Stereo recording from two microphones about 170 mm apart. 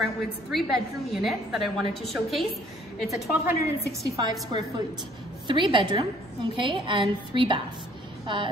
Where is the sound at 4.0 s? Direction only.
25° right (ahead or behind).